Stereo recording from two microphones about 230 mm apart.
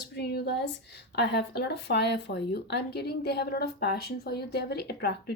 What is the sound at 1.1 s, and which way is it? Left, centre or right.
Speech, left.